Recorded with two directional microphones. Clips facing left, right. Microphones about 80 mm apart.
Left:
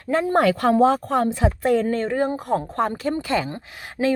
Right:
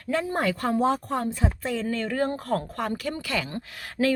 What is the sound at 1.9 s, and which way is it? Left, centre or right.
Speech, left.